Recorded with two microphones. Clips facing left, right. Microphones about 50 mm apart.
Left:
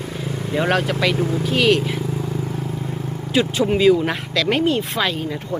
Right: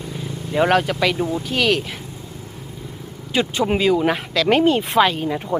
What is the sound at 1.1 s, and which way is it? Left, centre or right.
Speech, left.